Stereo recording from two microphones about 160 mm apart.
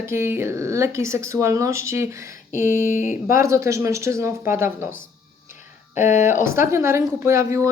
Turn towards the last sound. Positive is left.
turn(degrees=-20)  # may be behind; listen again after turning